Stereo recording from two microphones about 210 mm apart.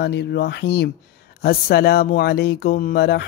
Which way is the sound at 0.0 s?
55° left (ahead or behind).